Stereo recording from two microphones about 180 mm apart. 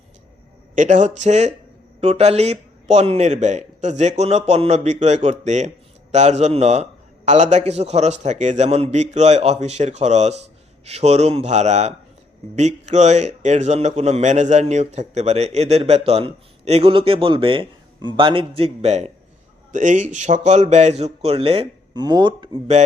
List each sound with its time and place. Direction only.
0.8 s a man's voice: 40° right (ahead or behind)